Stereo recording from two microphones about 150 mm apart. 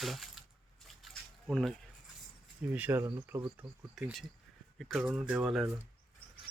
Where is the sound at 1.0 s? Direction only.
Centre (ahead or behind).